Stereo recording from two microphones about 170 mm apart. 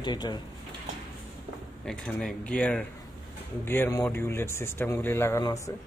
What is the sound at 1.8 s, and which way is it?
Speech, 5° left (ahead or behind).